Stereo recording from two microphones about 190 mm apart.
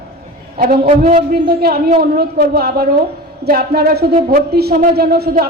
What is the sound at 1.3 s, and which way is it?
A man's voice, 55° right (ahead or behind).